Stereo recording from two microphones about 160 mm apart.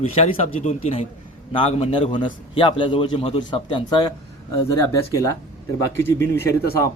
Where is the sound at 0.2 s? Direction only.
45° left (ahead or behind).